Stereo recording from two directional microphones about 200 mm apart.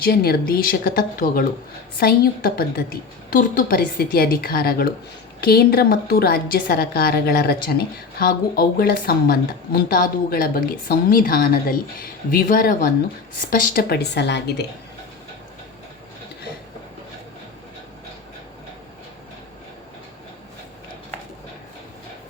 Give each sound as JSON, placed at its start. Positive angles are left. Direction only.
{"t": 0.0, "sound": "a woman's voice", "side_deg": 50}